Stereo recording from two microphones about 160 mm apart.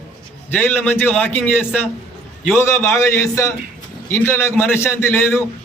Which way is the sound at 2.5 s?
15° left (ahead or behind).